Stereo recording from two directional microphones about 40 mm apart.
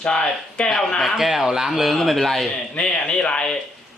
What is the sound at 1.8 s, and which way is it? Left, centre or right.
Speech, centre.